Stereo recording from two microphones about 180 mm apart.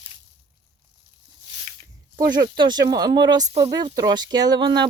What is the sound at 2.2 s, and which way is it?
Speech, 25° right (ahead or behind).